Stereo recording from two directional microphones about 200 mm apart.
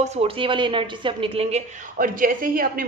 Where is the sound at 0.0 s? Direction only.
30° right (ahead or behind).